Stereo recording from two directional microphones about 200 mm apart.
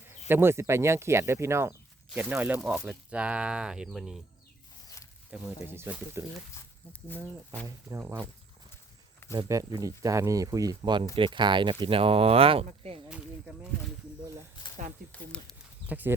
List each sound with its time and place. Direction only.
0.3 s speech: 10° right (ahead or behind)
5.3 s speech: 10° right (ahead or behind)
6.5 s speech: 10° left (ahead or behind)
7.9 s speech: 15° right (ahead or behind)
9.3 s speech: 15° right (ahead or behind)
13.1 s speech: 5° right (ahead or behind)
15.1 s speech: 5° left (ahead or behind)
15.9 s speech: 10° right (ahead or behind)